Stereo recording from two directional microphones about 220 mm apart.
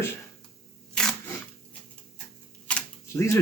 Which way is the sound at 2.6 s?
10° left (ahead or behind).